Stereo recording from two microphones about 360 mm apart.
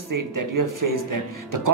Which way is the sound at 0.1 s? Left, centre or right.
Right.